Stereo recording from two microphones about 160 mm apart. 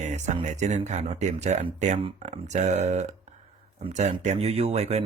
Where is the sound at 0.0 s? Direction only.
45° right (ahead or behind).